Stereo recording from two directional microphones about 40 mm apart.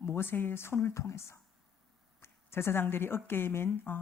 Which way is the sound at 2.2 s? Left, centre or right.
Left.